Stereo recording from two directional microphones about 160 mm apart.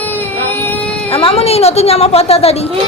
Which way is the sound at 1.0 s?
35° left (ahead or behind).